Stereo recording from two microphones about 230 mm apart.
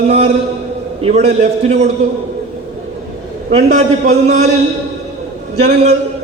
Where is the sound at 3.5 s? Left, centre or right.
Right.